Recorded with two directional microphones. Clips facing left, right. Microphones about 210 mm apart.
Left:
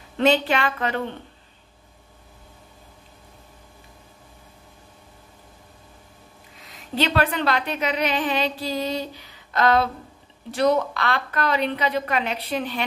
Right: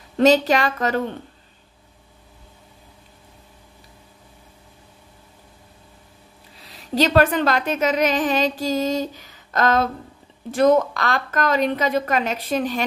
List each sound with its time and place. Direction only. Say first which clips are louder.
0.2 s a woman's voice: right 4 dB; 40° right (ahead or behind)
6.6 s a woman's voice: right 4 dB; 40° right (ahead or behind)